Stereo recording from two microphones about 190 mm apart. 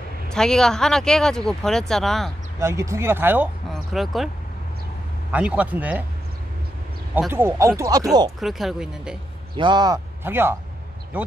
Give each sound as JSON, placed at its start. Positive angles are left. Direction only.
{"t": 0.3, "sound": "speech", "side_deg": 5}
{"t": 2.6, "sound": "speech", "side_deg": -15}
{"t": 3.7, "sound": "speech", "side_deg": 0}
{"t": 5.3, "sound": "speech", "side_deg": -5}
{"t": 7.2, "sound": "speech", "side_deg": -10}
{"t": 8.4, "sound": "speech", "side_deg": 0}
{"t": 9.6, "sound": "speech", "side_deg": -20}